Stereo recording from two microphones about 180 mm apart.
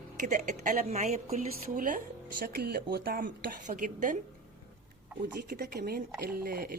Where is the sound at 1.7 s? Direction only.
50° right (ahead or behind).